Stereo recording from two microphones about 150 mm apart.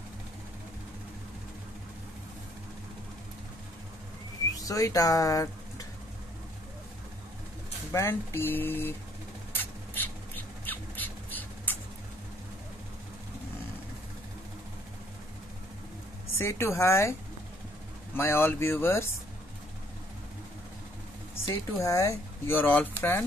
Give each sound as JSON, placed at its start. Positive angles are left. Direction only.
{"t": 4.6, "sound": "speech", "side_deg": 25}
{"t": 7.9, "sound": "speech", "side_deg": 15}
{"t": 10.3, "sound": "bird", "side_deg": 10}
{"t": 16.3, "sound": "speech", "side_deg": 15}
{"t": 18.1, "sound": "speech", "side_deg": 15}
{"t": 21.5, "sound": "speech", "side_deg": 20}